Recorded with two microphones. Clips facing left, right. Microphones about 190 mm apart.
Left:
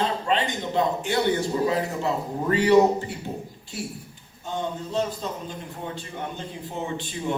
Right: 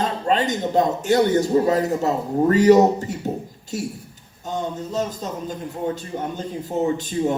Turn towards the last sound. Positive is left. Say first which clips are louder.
# right 7 dB
turn(degrees=-40)  # may be behind; listen again after turning